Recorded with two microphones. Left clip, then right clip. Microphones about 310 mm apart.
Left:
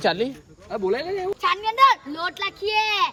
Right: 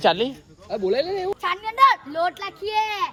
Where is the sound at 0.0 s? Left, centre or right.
Centre.